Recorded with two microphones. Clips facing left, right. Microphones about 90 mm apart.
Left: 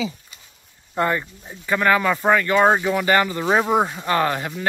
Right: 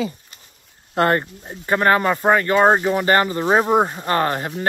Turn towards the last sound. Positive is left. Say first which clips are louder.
# right 1 dB
turn(degrees=-40)  # may be behind; listen again after turning